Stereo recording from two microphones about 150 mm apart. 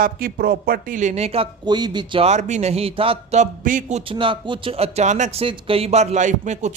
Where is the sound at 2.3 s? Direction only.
50° right (ahead or behind).